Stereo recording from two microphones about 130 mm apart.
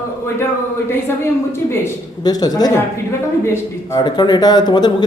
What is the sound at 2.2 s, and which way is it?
Speech, 30° left (ahead or behind).